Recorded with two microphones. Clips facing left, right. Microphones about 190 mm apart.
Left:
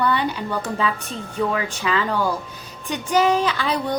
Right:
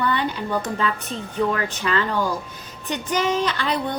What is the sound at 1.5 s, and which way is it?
A woman's voice, 5° left (ahead or behind).